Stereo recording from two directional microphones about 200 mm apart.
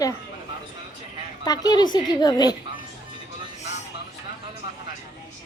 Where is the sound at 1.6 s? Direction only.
20° left (ahead or behind).